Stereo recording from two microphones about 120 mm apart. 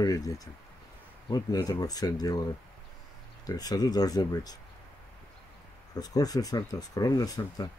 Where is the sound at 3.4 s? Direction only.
30° left (ahead or behind).